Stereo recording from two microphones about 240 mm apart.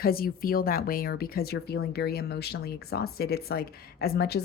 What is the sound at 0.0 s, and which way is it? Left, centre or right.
Speech, left.